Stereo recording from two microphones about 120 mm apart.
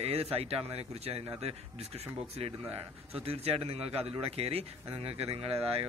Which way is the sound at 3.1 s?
55° right (ahead or behind).